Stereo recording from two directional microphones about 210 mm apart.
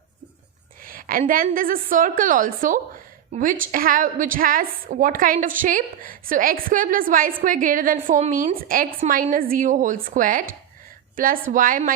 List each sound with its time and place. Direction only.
0.9 s a woman's voice: 40° right (ahead or behind)